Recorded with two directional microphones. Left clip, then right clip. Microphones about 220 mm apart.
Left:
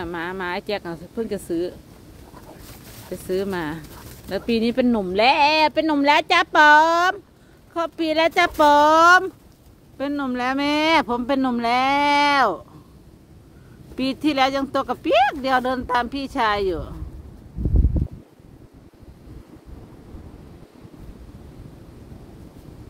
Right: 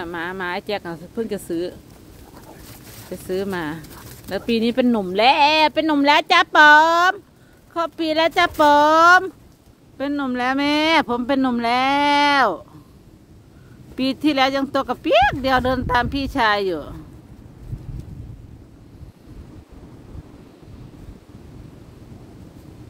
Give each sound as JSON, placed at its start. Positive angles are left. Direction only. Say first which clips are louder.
{"t": 0.0, "sound": "speech", "louder": "right 1 dB", "side_deg": 0}
{"t": 13.9, "sound": "speech", "louder": "right 2 dB", "side_deg": -10}